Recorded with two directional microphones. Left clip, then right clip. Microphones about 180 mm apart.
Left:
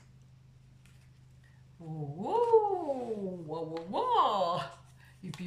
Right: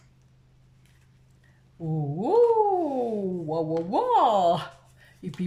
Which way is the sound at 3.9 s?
40° right (ahead or behind).